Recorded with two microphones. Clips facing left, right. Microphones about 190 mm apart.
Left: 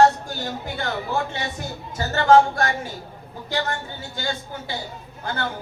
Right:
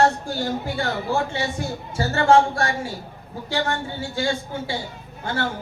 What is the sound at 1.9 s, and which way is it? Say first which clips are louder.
Speech: left 1 dB; 30° right (ahead or behind).